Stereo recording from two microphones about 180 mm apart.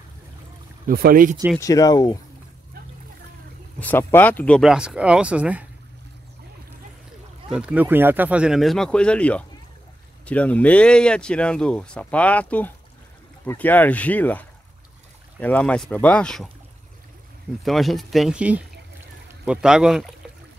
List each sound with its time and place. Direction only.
0.8 s speech: 55° right (ahead or behind)
1.6 s speech: 20° left (ahead or behind)
3.8 s speech: 10° left (ahead or behind); by 5.7 s 10° right (ahead or behind)
7.4 s speech: 5° right (ahead or behind)
15.4 s speech: 5° left (ahead or behind)
17.6 s speech: centre (ahead or behind)